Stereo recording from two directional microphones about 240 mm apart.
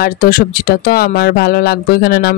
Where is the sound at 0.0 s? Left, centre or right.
Left.